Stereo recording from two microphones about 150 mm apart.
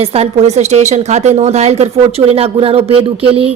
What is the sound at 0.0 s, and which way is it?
Speech, 40° right (ahead or behind).